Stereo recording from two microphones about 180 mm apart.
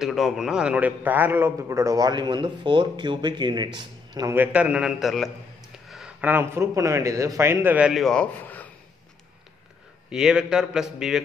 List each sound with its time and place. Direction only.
0.0 s a man's voice: centre (ahead or behind); by 4.4 s 20° right (ahead or behind)
4.4 s a man's voice: 5° right (ahead or behind)
10.0 s a man's voice: 5° right (ahead or behind)